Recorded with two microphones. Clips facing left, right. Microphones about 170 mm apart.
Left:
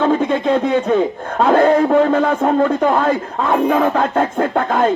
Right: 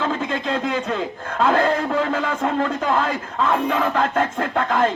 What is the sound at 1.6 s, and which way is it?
A man's voice, 60° left (ahead or behind).